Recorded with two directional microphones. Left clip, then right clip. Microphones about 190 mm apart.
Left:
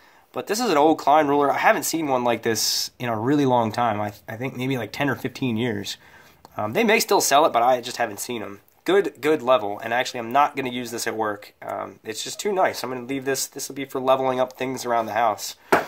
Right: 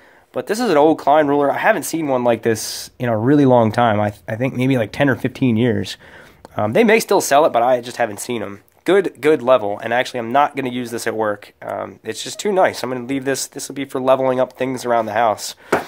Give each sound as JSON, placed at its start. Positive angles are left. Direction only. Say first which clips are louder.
{"t": 0.3, "sound": "speech", "louder": "right 5 dB", "side_deg": -30}